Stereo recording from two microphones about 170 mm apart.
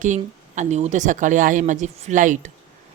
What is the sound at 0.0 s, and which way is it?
A woman's voice, 45° right (ahead or behind).